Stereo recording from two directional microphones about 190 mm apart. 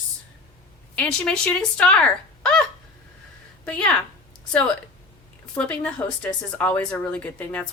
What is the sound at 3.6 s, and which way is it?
Speech, 5° left (ahead or behind).